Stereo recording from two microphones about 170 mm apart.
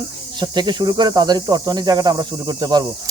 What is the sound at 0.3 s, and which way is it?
Speech, 25° right (ahead or behind).